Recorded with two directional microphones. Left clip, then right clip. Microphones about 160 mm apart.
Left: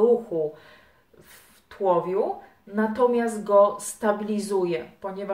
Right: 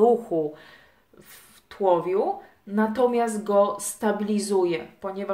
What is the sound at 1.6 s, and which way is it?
A woman's voice, 50° right (ahead or behind).